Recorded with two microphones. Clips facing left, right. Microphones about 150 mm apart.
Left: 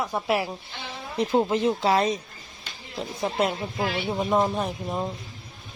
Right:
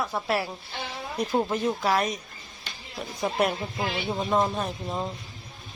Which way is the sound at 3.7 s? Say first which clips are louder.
Left 2 dB; centre (ahead or behind).